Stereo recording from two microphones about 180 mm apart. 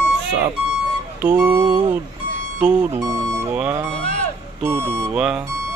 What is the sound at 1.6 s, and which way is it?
Speech, 25° right (ahead or behind).